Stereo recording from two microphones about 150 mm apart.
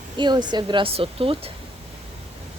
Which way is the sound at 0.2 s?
30° right (ahead or behind).